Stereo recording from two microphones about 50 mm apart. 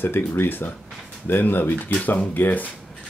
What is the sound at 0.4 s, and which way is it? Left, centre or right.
Speech, left.